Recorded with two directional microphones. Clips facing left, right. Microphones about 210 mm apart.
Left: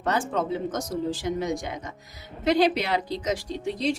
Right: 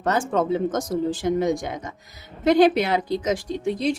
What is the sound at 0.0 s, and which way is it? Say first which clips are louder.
Speech: right 4 dB; 45° right (ahead or behind).